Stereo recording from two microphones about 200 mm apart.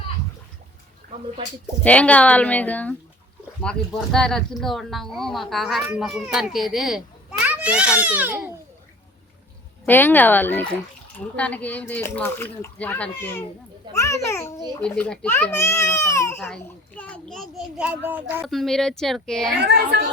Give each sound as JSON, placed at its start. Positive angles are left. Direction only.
{"t": 1.8, "sound": "a child's voice", "side_deg": 5}
{"t": 9.8, "sound": "a child's voice", "side_deg": 10}
{"t": 18.4, "sound": "speech", "side_deg": 0}
{"t": 19.5, "sound": "speech", "side_deg": -55}